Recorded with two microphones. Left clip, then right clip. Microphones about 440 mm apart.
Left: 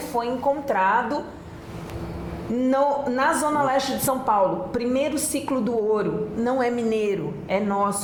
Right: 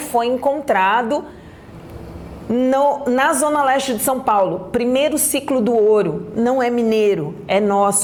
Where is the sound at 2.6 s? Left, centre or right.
Right.